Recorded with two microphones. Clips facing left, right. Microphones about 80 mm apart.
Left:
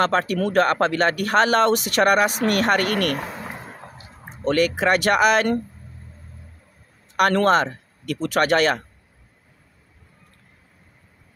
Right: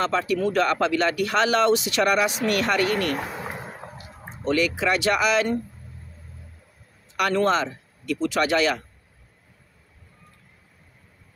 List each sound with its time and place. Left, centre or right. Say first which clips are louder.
0.0 s speech: left 2 dB; left
4.5 s speech: left 3 dB; left
7.2 s speech: left 4 dB; left